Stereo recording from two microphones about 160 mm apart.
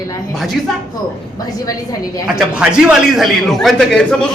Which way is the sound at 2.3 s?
5° right (ahead or behind).